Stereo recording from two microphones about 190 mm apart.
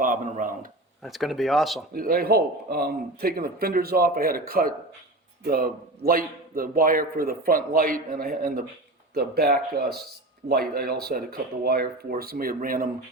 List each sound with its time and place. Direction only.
0.0 s speech: 45° right (ahead or behind)
1.0 s speech: centre (ahead or behind)
1.9 s a man's voice: 50° right (ahead or behind)